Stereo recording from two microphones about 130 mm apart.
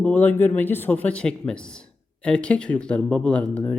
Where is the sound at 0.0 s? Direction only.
15° left (ahead or behind).